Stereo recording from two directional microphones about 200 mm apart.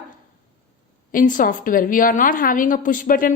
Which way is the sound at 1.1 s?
40° left (ahead or behind).